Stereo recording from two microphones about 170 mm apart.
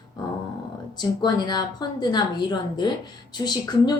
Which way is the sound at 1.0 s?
25° left (ahead or behind).